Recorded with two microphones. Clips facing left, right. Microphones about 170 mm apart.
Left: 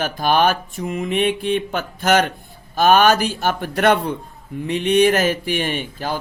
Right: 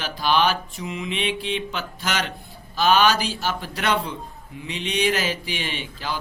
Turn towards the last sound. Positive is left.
turn(degrees=50)  # may be behind; listen again after turning